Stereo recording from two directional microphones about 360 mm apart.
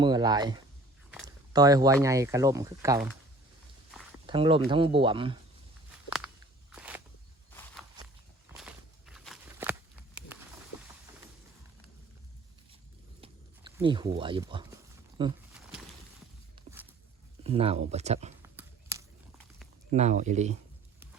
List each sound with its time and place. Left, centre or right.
0.0 s speech: centre
4.3 s speech: centre
6.1 s walk: centre
8.5 s a sound: centre
13.2 s a sound: centre
15.2 s speech: centre
16.7 s a sound: centre
17.4 s speech: centre
18.5 s biting: centre
19.9 s speech: centre